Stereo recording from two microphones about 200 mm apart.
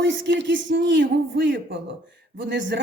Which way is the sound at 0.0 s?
65° right (ahead or behind).